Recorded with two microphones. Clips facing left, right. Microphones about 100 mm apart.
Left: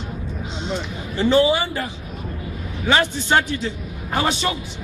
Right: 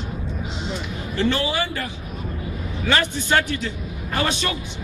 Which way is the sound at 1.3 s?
20° left (ahead or behind).